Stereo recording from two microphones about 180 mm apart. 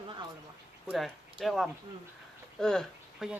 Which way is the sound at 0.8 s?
Centre (ahead or behind).